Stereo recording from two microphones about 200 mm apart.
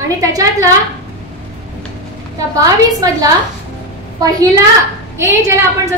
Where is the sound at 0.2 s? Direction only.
15° right (ahead or behind).